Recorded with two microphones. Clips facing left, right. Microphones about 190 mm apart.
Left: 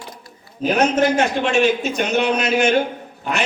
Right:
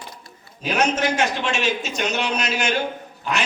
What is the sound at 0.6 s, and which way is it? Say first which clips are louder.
A man's voice: left 5 dB; 55° left (ahead or behind).